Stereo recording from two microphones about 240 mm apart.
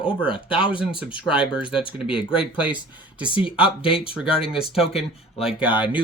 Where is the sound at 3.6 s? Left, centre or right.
Left.